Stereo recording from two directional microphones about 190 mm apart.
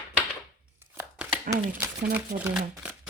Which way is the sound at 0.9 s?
5° right (ahead or behind).